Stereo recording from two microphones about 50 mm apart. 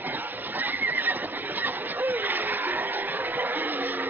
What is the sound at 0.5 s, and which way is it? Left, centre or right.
Neigh, right.